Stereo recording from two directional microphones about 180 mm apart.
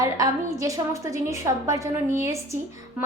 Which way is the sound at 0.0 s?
20° right (ahead or behind).